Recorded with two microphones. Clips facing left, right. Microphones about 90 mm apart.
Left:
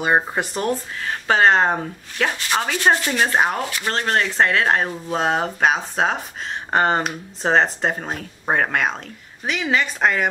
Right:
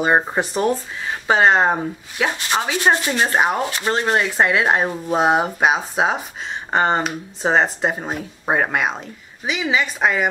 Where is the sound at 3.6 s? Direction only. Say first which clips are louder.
Right 3 dB; 25° right (ahead or behind).